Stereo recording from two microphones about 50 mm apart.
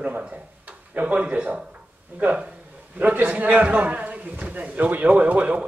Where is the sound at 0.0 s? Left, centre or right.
Right.